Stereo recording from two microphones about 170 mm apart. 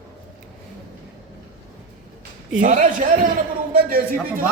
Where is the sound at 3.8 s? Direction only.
60° right (ahead or behind).